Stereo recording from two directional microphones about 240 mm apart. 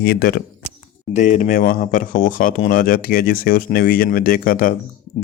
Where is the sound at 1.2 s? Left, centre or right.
Left.